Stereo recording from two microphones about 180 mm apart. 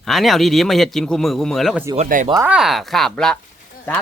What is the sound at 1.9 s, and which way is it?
Speech, 45° right (ahead or behind).